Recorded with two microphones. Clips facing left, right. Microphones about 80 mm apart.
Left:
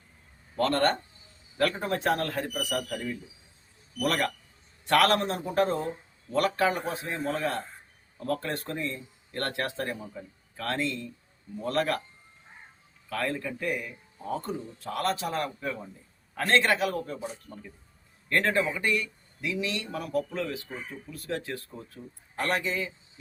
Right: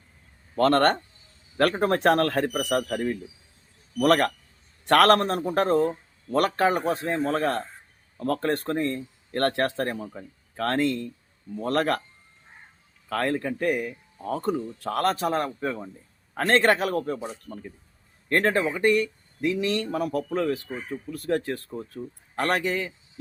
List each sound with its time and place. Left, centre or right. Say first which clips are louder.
0.5 s speech: right 5 dB; right
13.1 s speech: right 5 dB; right